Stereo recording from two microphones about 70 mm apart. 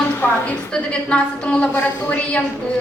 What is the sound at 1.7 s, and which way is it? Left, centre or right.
Speech, left.